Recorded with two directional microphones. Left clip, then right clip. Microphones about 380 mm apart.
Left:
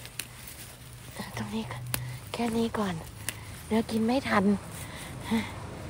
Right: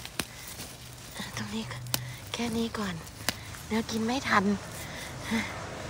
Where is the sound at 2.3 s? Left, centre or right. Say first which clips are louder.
Left 3 dB; centre.